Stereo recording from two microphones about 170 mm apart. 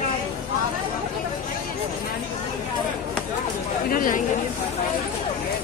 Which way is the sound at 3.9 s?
55° left (ahead or behind).